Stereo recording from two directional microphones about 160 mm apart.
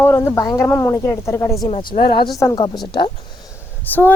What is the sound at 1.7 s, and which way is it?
Speech, 35° left (ahead or behind).